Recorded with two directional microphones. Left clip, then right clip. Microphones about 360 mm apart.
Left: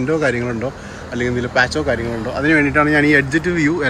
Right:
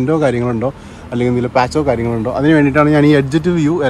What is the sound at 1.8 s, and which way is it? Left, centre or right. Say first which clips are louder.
Speech: right 4 dB; right.